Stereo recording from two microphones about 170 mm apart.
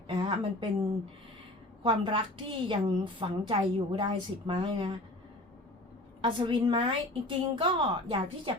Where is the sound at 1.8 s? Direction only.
30° right (ahead or behind).